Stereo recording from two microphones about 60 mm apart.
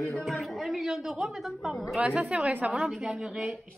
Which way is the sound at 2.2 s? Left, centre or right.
Centre.